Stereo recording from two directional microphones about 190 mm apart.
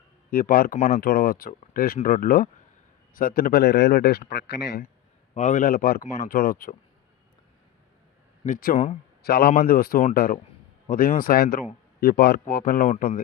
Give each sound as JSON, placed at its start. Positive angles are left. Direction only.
{"t": 0.3, "sound": "speech", "side_deg": 50}
{"t": 5.3, "sound": "speech", "side_deg": 40}
{"t": 8.4, "sound": "speech", "side_deg": 45}
{"t": 9.2, "sound": "speech", "side_deg": 55}